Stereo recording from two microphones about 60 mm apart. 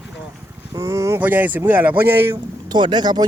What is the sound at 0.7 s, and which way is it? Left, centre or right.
Speech, right.